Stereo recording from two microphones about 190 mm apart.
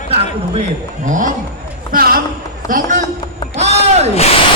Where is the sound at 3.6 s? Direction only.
35° right (ahead or behind).